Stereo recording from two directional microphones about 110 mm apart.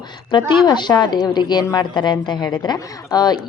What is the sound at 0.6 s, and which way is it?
A woman's voice, 40° left (ahead or behind).